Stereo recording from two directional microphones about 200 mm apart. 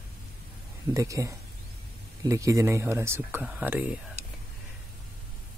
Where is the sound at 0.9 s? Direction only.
15° right (ahead or behind).